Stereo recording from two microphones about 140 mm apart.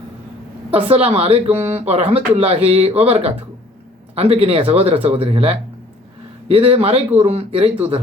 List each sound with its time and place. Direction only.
0.7 s speech: 45° right (ahead or behind)